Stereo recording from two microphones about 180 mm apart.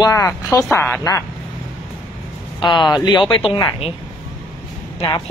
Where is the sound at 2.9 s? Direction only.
25° left (ahead or behind).